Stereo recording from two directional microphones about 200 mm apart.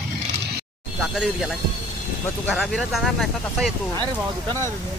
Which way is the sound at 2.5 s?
Centre (ahead or behind).